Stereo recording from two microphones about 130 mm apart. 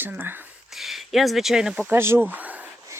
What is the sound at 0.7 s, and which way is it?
Speech, centre (ahead or behind).